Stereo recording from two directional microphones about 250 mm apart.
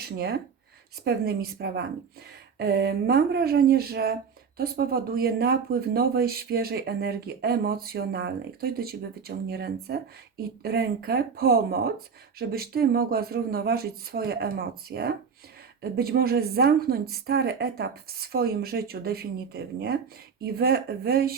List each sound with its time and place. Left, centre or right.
0.0 s speech: right